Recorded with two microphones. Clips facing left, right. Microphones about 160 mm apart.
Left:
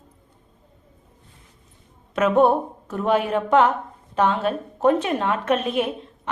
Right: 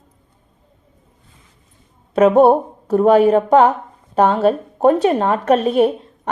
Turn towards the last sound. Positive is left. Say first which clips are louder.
# right 8 dB
turn(degrees=-40)  # may be behind; listen again after turning